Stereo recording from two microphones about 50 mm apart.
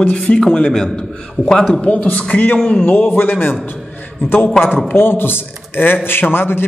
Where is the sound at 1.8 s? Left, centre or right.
Left.